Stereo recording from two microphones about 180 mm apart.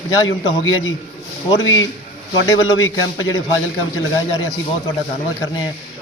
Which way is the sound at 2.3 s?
20° left (ahead or behind).